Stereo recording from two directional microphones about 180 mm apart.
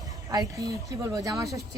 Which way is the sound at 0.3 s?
20° right (ahead or behind).